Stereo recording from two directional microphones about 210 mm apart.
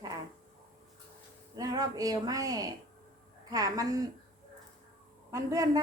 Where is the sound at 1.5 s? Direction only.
20° right (ahead or behind).